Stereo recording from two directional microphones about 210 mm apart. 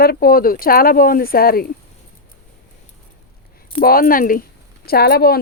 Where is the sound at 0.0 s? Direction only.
45° left (ahead or behind).